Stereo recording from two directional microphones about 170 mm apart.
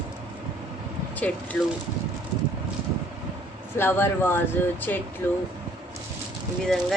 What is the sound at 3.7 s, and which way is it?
Speech, 15° left (ahead or behind).